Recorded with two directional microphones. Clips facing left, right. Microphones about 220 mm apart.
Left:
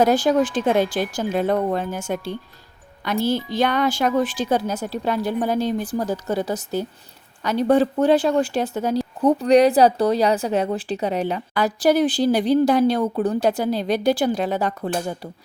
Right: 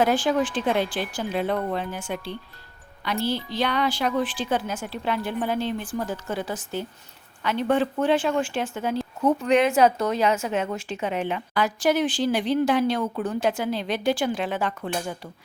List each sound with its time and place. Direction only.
0.0 s speech: 40° left (ahead or behind)